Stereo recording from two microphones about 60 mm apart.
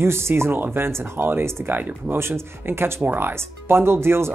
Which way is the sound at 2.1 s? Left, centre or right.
Right.